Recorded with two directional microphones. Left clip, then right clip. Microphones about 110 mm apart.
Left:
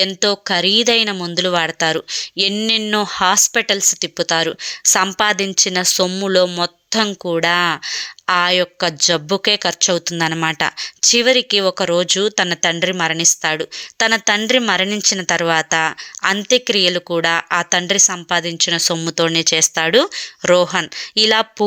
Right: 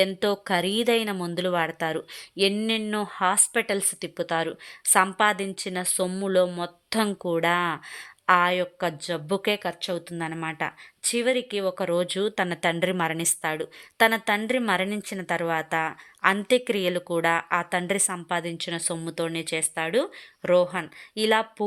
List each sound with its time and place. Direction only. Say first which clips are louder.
0.0 s a woman's voice: left 7 dB; 10° left (ahead or behind)
2.6 s speech: left 10 dB; 25° left (ahead or behind)
7.0 s a woman's voice: left 7 dB; 10° left (ahead or behind)
8.5 s speech: left 10 dB; 20° left (ahead or behind)
9.8 s speech: left 13 dB; 35° left (ahead or behind); by 13.3 s 5° left (ahead or behind)
13.4 s a woman's voice: left 10 dB; 20° left (ahead or behind)